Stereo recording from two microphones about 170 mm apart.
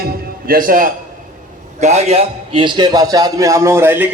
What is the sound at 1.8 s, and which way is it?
A man's voice, 40° right (ahead or behind).